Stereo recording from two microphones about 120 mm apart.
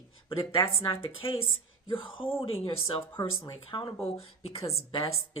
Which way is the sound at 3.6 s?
50° left (ahead or behind).